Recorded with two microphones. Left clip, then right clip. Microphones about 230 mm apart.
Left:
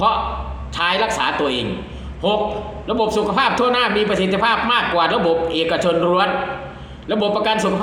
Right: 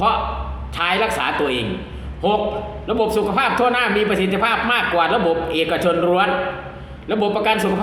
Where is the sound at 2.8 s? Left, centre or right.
Centre.